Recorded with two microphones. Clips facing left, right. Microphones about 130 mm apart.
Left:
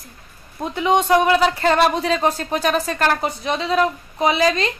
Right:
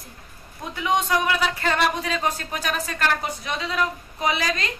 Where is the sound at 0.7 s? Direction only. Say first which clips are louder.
Left 6 dB; 30° left (ahead or behind).